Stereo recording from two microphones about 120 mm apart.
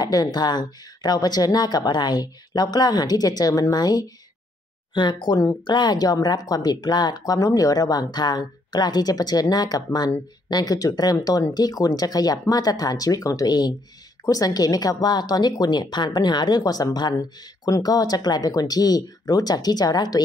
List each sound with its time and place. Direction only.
0.0 s a woman's voice: 35° left (ahead or behind)